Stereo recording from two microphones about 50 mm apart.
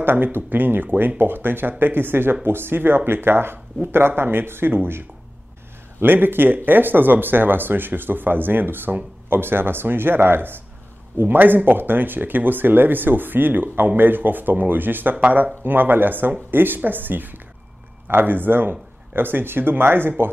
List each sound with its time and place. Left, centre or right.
0.0 s speech: right